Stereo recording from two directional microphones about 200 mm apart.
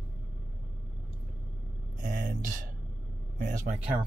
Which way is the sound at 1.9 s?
40° right (ahead or behind).